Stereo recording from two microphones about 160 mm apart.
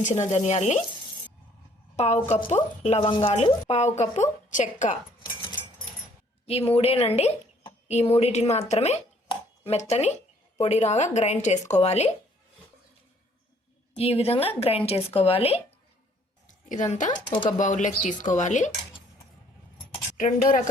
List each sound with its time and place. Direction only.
0.0 s speech: 45° left (ahead or behind)
2.0 s speech: 45° left (ahead or behind)
4.9 s music: 25° left (ahead or behind)
6.4 s a woman's voice: 40° left (ahead or behind)
9.3 s dishes: 40° left (ahead or behind)
10.6 s speech: 45° left (ahead or behind)
13.9 s speech: 40° left (ahead or behind)
16.5 s speech: 50° left (ahead or behind)
17.2 s speech: 30° left (ahead or behind)
17.6 s speech: 50° left (ahead or behind)
20.1 s speech: 55° left (ahead or behind)